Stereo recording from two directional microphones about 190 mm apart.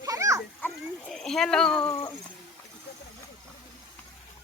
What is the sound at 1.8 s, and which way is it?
Speech, 15° left (ahead or behind).